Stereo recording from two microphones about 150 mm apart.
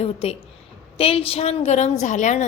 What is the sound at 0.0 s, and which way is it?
A woman's voice, 40° left (ahead or behind).